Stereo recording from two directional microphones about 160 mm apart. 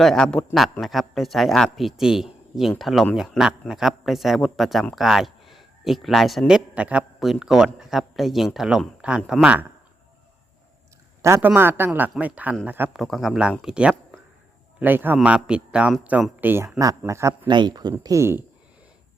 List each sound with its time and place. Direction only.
0.0 s speech: 5° left (ahead or behind)
11.2 s a man's voice: 15° right (ahead or behind)
13.0 s a man's voice: centre (ahead or behind); by 17.5 s 15° right (ahead or behind)
17.5 s a man's voice: 25° right (ahead or behind)